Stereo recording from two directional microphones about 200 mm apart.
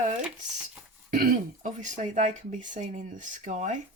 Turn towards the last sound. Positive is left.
turn(degrees=-40)  # may be behind; listen again after turning